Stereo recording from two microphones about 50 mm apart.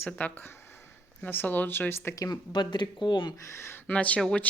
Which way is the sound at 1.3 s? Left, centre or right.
Left.